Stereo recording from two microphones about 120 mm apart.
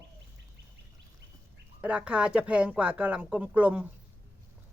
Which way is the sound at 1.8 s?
10° right (ahead or behind).